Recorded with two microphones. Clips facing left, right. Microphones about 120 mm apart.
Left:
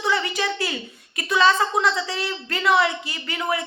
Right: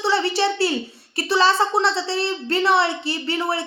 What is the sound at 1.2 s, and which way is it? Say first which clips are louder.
Speech: right 1 dB; 30° right (ahead or behind).